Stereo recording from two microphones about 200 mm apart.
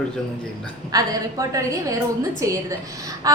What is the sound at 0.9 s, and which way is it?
A woman's voice, 15° right (ahead or behind).